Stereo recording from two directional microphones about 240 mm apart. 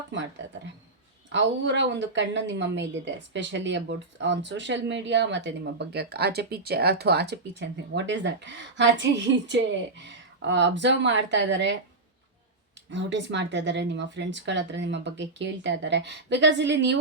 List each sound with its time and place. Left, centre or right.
1.3 s a woman's voice: right
12.9 s a woman's voice: right